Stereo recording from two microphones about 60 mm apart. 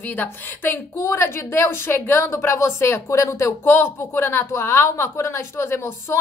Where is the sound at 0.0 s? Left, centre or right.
Left.